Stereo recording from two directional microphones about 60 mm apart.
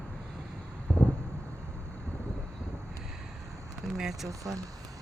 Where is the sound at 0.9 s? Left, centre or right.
Left.